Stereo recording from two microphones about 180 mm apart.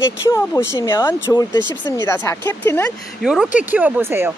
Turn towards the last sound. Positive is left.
turn(degrees=-10)  # may be behind; listen again after turning